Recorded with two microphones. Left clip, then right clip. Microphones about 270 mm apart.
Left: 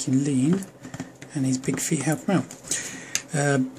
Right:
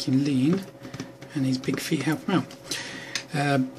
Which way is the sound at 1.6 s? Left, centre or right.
Centre.